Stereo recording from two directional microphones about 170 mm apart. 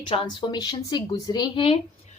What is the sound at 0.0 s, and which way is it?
A woman's voice, 30° left (ahead or behind).